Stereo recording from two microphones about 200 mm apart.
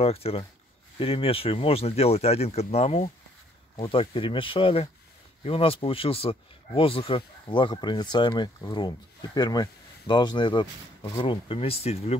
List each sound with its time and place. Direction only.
0.0 s speech: 30° left (ahead or behind)